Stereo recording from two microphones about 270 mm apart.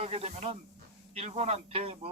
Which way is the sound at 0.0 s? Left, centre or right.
Right.